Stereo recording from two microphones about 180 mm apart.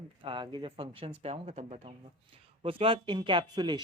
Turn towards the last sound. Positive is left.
turn(degrees=-25)  # may be behind; listen again after turning